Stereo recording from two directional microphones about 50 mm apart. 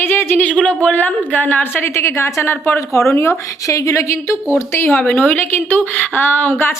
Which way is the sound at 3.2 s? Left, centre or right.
Left.